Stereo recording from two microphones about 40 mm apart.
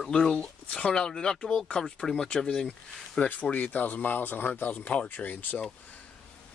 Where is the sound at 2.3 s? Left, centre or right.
Left.